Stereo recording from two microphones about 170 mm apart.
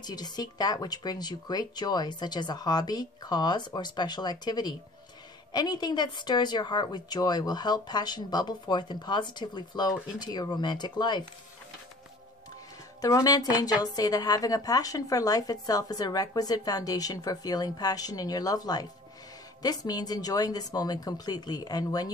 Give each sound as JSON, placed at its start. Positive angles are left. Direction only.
{"t": 0.0, "sound": "a woman's voice", "side_deg": 25}
{"t": 13.0, "sound": "a woman's voice", "side_deg": 20}